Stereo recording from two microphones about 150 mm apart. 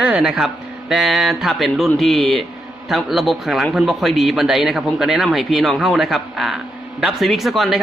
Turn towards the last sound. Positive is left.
turn(degrees=0)  # may be behind; listen again after turning